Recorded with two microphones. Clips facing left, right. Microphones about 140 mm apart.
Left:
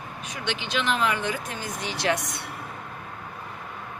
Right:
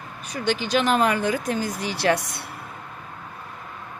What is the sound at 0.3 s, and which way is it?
Speech, 40° right (ahead or behind).